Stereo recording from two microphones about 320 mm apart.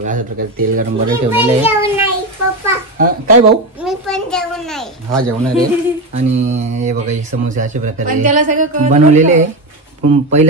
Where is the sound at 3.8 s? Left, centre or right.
Centre.